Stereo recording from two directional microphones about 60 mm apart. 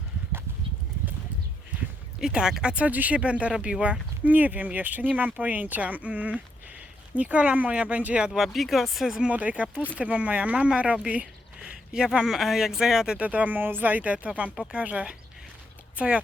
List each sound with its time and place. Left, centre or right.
2.2 s speech: centre
8.3 s speech: centre
9.2 s speech: right
10.9 s a sound: centre
11.9 s speech: centre
13.1 s speech: right